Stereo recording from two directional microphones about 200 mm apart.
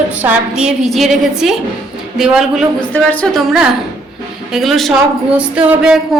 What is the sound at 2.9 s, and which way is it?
Speech, 5° left (ahead or behind).